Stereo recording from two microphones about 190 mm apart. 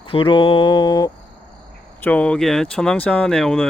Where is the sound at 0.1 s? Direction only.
25° left (ahead or behind).